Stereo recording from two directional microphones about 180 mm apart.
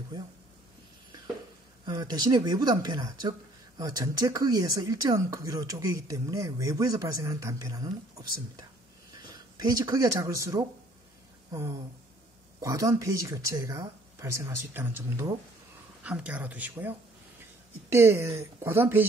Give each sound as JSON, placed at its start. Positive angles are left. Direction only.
{"t": 1.9, "sound": "speech", "side_deg": -20}
{"t": 12.5, "sound": "speech", "side_deg": -20}